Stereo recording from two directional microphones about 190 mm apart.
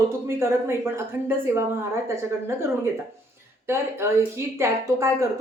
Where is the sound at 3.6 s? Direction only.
15° right (ahead or behind).